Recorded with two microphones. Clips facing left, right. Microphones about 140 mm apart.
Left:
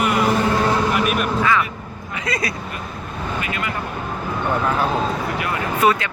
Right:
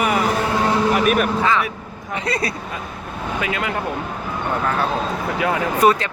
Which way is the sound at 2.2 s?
30° right (ahead or behind).